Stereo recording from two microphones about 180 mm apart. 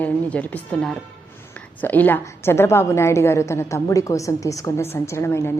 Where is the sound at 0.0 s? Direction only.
10° left (ahead or behind).